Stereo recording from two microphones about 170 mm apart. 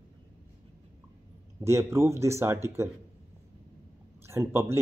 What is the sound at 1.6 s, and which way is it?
Speech, 15° right (ahead or behind).